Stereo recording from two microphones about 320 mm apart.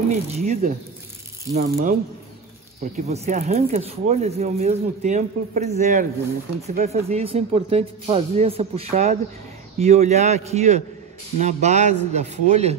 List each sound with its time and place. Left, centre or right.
0.1 s speech: right